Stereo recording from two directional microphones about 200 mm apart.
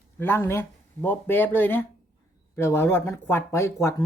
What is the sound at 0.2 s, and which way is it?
Speech, 10° left (ahead or behind).